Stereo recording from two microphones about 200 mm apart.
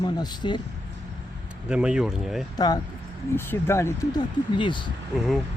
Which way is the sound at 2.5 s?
20° left (ahead or behind).